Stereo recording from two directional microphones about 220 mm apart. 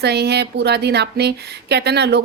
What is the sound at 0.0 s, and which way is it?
Speech, 50° right (ahead or behind).